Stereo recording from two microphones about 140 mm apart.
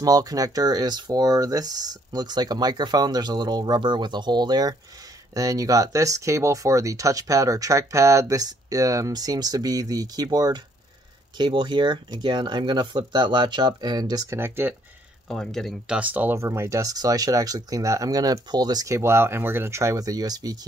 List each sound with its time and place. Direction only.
0.0 s speech: 25° right (ahead or behind)
15.2 s speech: 5° left (ahead or behind)
16.0 s speech: 10° right (ahead or behind)